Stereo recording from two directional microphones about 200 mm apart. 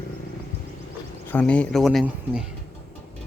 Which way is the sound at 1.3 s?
5° left (ahead or behind).